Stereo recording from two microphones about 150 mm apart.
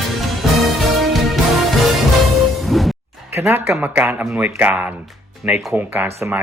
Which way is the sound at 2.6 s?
Centre (ahead or behind).